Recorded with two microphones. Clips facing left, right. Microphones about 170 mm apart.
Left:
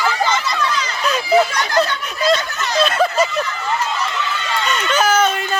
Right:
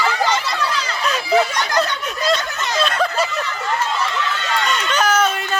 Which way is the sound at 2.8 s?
5° left (ahead or behind).